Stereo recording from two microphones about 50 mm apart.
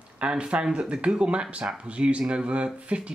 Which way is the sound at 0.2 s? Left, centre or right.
Right.